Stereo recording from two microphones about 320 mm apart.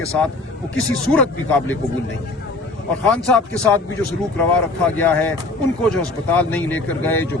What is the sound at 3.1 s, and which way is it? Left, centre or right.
Speech, centre.